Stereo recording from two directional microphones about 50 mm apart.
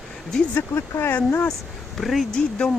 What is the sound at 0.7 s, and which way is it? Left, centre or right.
Speech, left.